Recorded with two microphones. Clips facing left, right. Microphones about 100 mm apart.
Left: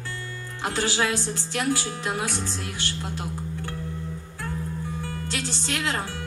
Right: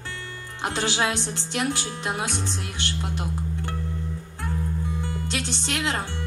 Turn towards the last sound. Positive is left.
turn(degrees=-20)  # may be behind; listen again after turning